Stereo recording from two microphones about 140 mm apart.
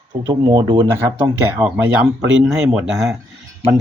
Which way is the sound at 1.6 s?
10° right (ahead or behind).